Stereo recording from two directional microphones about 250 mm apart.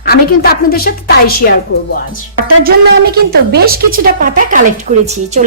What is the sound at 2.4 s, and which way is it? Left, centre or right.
A woman's voice, right.